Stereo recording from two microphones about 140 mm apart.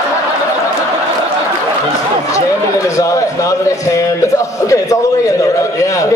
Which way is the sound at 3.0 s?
20° left (ahead or behind).